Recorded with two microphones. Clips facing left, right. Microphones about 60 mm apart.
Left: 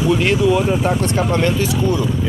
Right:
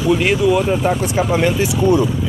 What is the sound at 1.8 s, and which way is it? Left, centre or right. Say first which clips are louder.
Speech: right 8 dB; right.